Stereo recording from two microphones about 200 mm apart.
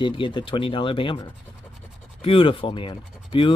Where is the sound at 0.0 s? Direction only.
25° left (ahead or behind).